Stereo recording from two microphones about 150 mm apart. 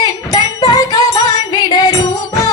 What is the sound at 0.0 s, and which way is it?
Music, 25° left (ahead or behind).